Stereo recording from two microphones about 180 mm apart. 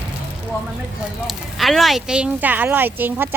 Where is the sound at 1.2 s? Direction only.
Centre (ahead or behind).